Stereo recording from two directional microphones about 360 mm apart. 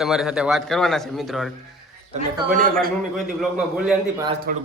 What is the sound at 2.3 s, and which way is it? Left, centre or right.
Speech, right.